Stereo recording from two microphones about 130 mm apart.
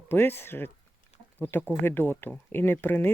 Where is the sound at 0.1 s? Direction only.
15° left (ahead or behind).